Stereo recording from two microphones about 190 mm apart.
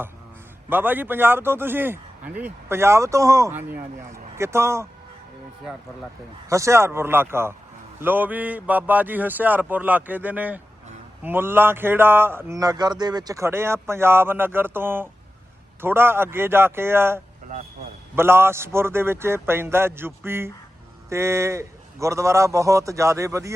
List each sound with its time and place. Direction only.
0.7 s a man's voice: 10° right (ahead or behind)
6.5 s a man's voice: 15° right (ahead or behind)